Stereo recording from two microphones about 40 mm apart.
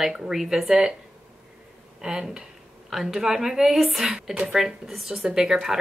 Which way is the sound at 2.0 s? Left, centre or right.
Centre.